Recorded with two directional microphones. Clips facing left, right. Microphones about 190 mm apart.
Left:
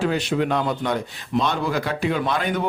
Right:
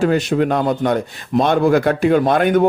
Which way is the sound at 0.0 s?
45° right (ahead or behind).